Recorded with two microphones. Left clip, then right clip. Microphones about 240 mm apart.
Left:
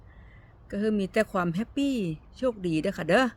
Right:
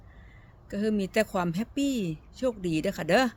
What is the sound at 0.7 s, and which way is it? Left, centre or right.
Speech, centre.